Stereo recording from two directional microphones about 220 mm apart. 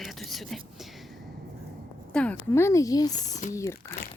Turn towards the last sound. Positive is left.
turn(degrees=15)  # may be behind; listen again after turning